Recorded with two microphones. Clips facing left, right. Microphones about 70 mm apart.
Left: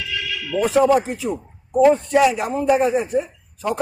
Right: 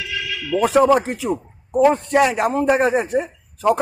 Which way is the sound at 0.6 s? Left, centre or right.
Right.